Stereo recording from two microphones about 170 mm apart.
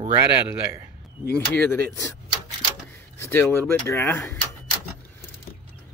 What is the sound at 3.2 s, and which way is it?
Speech, 10° left (ahead or behind).